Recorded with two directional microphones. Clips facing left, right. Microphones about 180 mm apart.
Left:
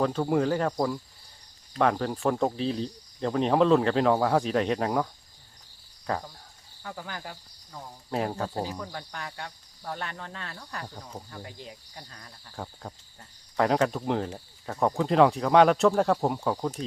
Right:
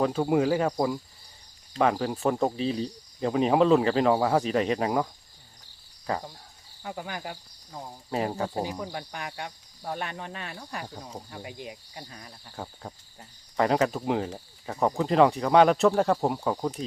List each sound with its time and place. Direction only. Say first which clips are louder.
0.0 s cricket: right 1 dB; 10° right (ahead or behind)
1.8 s speech: right 1 dB; 5° right (ahead or behind)
6.1 s speech: even; centre (ahead or behind)
6.8 s speech: right 3 dB; 20° right (ahead or behind)
8.1 s speech: right 1 dB; 5° right (ahead or behind)
8.8 s cricket: right 2 dB; 15° right (ahead or behind)
12.5 s speech: even; 5° right (ahead or behind)